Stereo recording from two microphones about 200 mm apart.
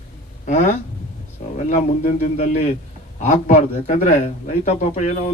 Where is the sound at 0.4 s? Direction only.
40° left (ahead or behind).